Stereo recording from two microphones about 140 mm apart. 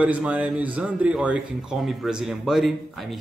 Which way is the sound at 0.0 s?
10° right (ahead or behind).